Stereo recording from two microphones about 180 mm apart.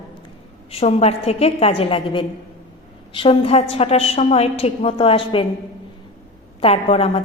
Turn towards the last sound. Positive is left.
turn(degrees=30)  # may be behind; listen again after turning